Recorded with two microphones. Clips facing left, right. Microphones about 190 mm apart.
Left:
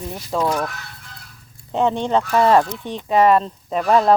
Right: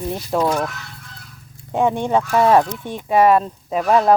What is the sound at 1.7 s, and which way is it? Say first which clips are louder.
Speech: right 1 dB; 10° right (ahead or behind).